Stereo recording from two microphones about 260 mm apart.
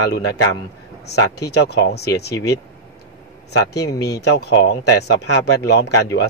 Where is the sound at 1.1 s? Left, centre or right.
Left.